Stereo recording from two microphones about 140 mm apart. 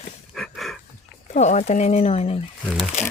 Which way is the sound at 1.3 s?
55° left (ahead or behind).